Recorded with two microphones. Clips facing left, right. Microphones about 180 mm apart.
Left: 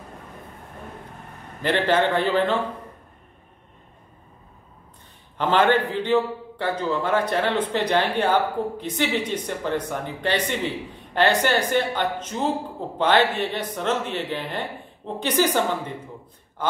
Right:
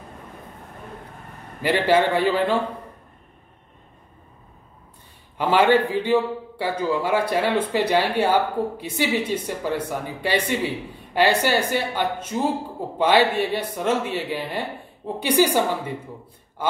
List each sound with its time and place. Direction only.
1.6 s a man's voice: 10° right (ahead or behind)
5.4 s a man's voice: 10° right (ahead or behind)